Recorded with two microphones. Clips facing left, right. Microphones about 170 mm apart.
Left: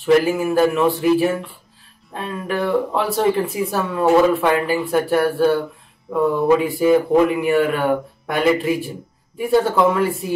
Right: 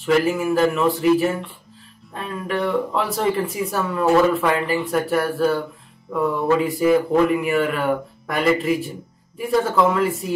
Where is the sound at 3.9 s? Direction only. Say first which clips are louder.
Left 2 dB; 20° left (ahead or behind).